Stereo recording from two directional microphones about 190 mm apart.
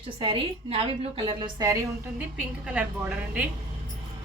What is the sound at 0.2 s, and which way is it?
A woman's voice, 25° right (ahead or behind).